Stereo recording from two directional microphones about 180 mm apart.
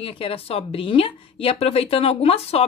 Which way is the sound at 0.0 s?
30° left (ahead or behind).